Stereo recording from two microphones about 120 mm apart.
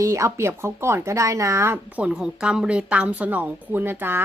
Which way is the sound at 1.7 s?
10° right (ahead or behind).